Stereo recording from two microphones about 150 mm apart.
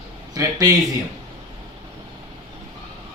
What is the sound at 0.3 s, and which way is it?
Speech, 20° right (ahead or behind).